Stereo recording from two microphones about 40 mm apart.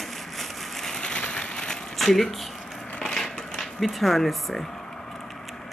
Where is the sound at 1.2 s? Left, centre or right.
Left.